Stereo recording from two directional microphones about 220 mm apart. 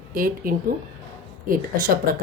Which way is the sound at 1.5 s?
40° right (ahead or behind).